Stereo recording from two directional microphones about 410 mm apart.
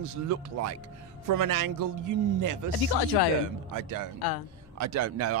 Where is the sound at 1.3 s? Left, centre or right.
Right.